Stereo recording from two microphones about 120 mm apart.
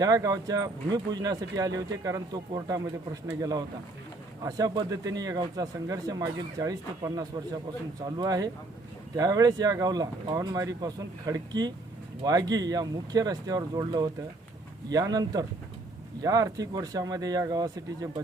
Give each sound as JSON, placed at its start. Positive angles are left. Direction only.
{"t": 0.0, "sound": "speech", "side_deg": -35}
{"t": 4.4, "sound": "speech", "side_deg": -30}